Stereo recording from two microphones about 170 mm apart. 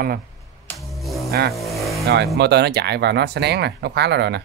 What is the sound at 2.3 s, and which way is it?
Speech, 80° right.